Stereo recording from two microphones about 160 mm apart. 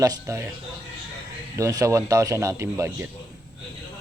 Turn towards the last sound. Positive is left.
turn(degrees=-15)  # may be behind; listen again after turning